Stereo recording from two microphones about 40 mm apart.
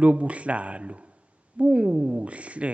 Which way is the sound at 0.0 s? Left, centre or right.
Right.